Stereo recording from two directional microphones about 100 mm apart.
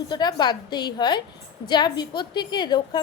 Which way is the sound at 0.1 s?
45° left (ahead or behind).